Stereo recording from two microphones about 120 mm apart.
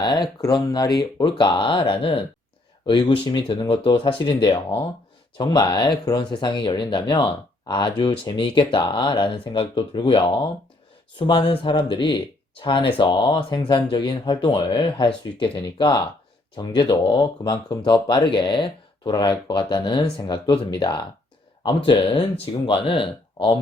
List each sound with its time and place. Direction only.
0.0 s speech: 35° left (ahead or behind)